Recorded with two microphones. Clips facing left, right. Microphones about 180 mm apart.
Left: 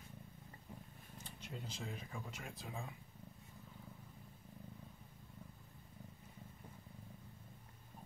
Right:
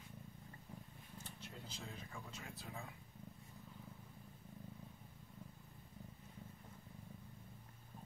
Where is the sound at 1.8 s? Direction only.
15° left (ahead or behind).